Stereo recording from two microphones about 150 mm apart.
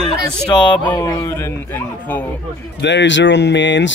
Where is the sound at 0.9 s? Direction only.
25° left (ahead or behind).